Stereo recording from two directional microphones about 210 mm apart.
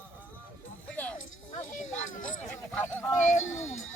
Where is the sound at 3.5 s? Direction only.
70° left (ahead or behind).